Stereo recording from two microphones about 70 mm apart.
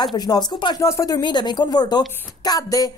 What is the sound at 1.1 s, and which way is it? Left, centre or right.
A woman's voice, left.